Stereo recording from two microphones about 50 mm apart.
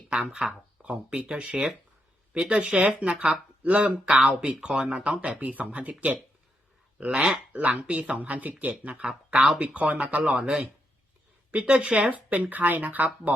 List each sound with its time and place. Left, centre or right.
0.1 s speech: centre
0.8 s speech: right